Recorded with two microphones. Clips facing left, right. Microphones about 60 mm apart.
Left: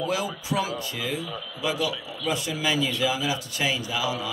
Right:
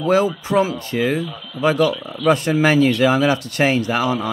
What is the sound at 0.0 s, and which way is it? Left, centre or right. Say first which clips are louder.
Speech: right 11 dB; right.